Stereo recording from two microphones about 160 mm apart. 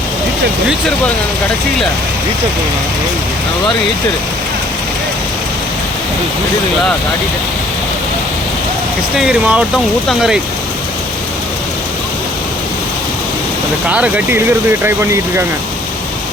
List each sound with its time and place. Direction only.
0.7 s speech: 5° left (ahead or behind)
9.1 s speech: 5° right (ahead or behind)
13.9 s speech: 10° right (ahead or behind)